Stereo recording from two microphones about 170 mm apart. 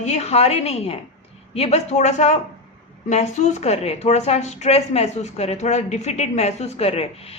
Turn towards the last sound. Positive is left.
turn(degrees=35)  # may be behind; listen again after turning